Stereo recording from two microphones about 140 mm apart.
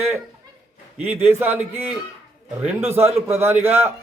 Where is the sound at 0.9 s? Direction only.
15° right (ahead or behind).